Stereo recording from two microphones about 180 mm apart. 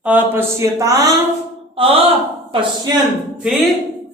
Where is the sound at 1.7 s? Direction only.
30° right (ahead or behind).